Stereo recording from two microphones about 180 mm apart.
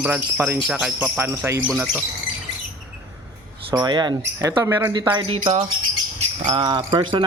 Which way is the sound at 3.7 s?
25° right (ahead or behind).